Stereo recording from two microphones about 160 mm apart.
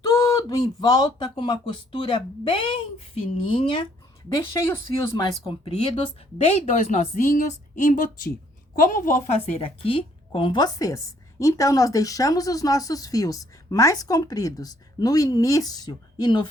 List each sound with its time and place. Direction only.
0.2 s speech: 20° left (ahead or behind)
4.3 s a woman's voice: 20° left (ahead or behind)
5.1 s a woman's voice: 30° left (ahead or behind); by 9.3 s 55° left (ahead or behind)
9.6 s a woman's voice: 35° left (ahead or behind)